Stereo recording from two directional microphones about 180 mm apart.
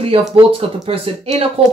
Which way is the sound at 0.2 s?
30° right (ahead or behind).